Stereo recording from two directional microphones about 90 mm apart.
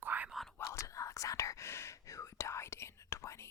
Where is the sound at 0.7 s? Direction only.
35° left (ahead or behind).